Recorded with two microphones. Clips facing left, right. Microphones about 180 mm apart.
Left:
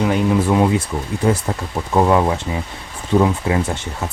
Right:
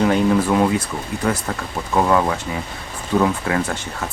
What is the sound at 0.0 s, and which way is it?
Speech, 10° left (ahead or behind).